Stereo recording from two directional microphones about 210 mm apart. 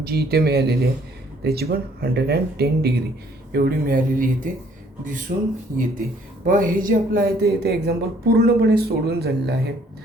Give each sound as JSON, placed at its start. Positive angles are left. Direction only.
{"t": 0.0, "sound": "speech", "side_deg": -50}